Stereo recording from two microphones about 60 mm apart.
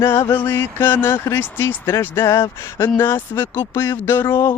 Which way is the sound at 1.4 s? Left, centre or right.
Left.